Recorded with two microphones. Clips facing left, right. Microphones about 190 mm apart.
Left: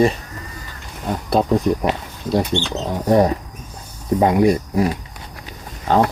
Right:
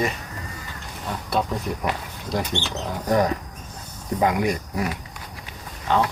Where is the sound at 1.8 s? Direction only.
30° left (ahead or behind).